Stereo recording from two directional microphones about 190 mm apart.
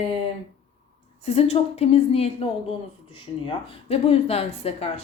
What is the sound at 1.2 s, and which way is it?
Speech, 35° left (ahead or behind).